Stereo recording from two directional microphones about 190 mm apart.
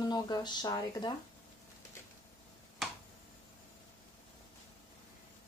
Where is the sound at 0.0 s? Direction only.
20° left (ahead or behind).